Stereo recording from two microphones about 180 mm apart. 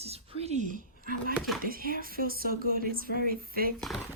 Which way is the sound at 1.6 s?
55° right (ahead or behind).